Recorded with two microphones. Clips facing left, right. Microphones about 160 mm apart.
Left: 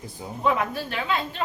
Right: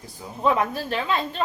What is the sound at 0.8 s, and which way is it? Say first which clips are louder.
Speech: right 2 dB; 35° right (ahead or behind).